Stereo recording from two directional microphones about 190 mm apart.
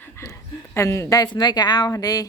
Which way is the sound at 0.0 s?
15° left (ahead or behind).